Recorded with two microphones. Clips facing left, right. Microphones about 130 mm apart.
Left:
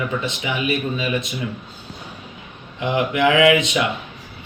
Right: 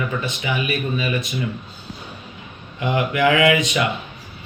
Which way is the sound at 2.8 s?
15° left (ahead or behind).